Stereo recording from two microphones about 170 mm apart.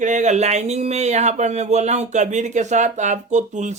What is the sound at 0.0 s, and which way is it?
Speech, 45° right (ahead or behind).